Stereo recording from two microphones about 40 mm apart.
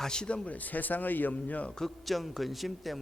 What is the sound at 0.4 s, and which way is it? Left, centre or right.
Speech, left.